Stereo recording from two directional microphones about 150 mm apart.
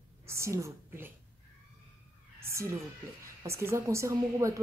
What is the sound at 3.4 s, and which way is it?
A woman's voice, 20° right (ahead or behind).